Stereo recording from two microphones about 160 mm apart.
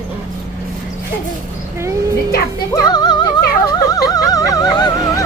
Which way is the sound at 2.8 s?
25° left (ahead or behind).